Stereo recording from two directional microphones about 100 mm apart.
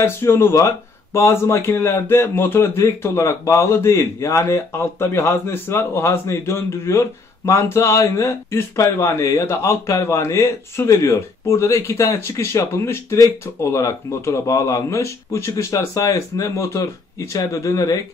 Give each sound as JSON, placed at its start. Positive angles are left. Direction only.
{"t": 0.0, "sound": "speech", "side_deg": 25}